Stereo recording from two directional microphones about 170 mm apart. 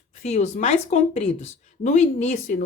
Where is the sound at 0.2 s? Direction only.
45° left (ahead or behind).